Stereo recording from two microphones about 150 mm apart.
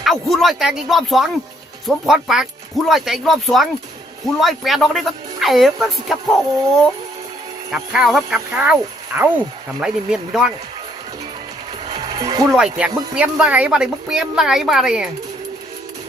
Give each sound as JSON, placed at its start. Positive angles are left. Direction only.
{"t": 0.0, "sound": "speech", "side_deg": 0}
{"t": 7.7, "sound": "speech", "side_deg": -5}
{"t": 12.0, "sound": "music", "side_deg": -25}
{"t": 12.5, "sound": "speech", "side_deg": -5}